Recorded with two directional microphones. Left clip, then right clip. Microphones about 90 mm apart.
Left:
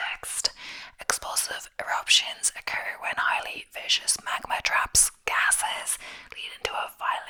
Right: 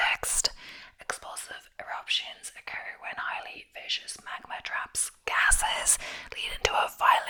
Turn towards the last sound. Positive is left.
turn(degrees=-30)  # may be behind; listen again after turning